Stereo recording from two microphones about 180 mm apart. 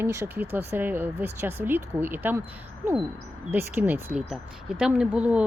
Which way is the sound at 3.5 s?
10° right (ahead or behind).